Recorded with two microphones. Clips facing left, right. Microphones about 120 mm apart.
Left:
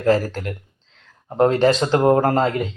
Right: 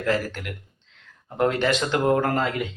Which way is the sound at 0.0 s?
35° left (ahead or behind).